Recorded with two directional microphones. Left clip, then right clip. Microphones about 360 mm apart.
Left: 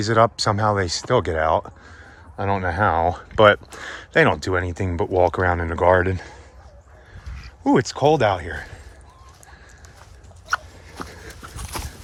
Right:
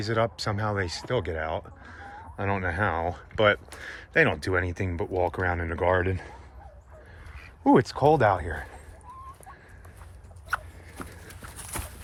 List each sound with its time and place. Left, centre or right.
0.0 s speech: centre
7.6 s speech: centre
10.5 s a sound: centre